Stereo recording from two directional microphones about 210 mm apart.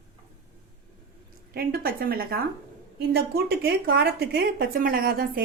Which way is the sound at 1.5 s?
45° right (ahead or behind).